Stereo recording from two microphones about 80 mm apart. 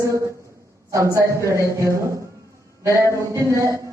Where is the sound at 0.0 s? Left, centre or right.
Right.